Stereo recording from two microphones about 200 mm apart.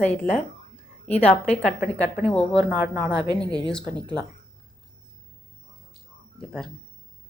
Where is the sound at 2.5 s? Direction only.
10° right (ahead or behind).